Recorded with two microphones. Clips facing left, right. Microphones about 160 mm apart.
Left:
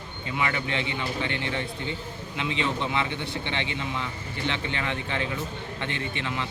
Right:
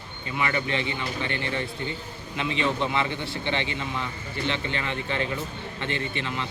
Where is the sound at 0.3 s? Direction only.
15° left (ahead or behind).